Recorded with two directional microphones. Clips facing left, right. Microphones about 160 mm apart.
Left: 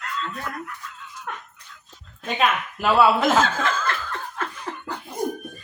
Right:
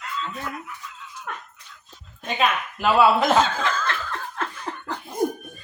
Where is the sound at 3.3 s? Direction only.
5° left (ahead or behind).